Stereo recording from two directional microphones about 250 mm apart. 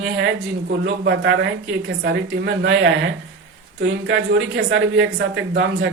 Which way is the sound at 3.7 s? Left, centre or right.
Right.